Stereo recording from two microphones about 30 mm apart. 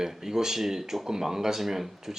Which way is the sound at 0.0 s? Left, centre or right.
Centre.